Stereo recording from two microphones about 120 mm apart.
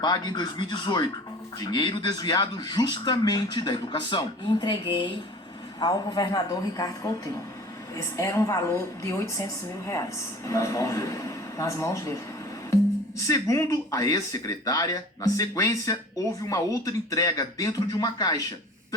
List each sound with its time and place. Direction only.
0.0 s a man's voice: 35° left (ahead or behind)
13.2 s speech: 25° left (ahead or behind)